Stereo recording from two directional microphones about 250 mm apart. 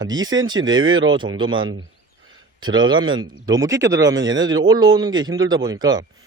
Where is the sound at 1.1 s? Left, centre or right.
Centre.